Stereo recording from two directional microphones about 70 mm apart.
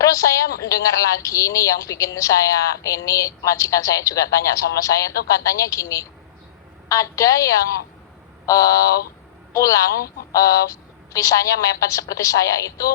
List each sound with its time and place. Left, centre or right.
0.0 s a woman's voice: left